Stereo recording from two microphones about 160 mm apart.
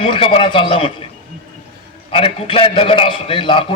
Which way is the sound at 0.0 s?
30° left (ahead or behind).